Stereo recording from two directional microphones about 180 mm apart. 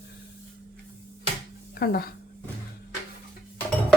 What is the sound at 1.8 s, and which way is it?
Speech, 60° left (ahead or behind).